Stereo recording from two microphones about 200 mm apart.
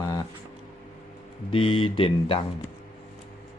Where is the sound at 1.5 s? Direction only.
25° left (ahead or behind).